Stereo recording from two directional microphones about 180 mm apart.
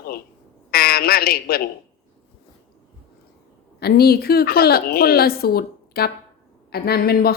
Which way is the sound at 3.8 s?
60° left (ahead or behind).